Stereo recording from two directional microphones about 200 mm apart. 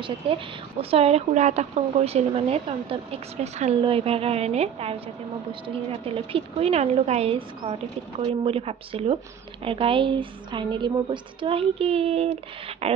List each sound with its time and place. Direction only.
0.0 s a woman's voice: 25° right (ahead or behind)